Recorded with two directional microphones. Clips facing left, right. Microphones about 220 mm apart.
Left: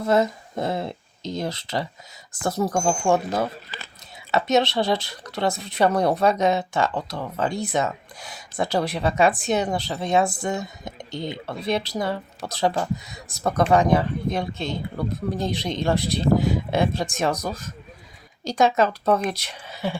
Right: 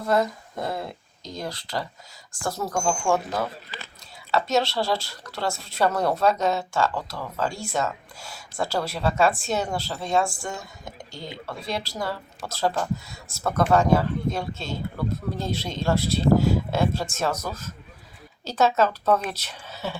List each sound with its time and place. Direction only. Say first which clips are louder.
0.1 s speech: left 2 dB; 25° left (ahead or behind)